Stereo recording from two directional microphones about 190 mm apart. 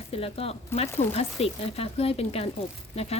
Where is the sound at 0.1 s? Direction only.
30° left (ahead or behind).